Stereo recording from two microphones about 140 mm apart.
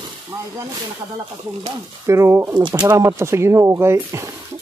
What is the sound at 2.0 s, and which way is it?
Speech, 20° right (ahead or behind).